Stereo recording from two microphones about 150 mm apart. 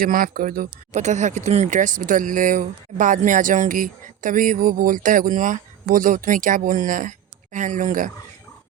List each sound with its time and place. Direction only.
0.0 s speech: 70° right (ahead or behind)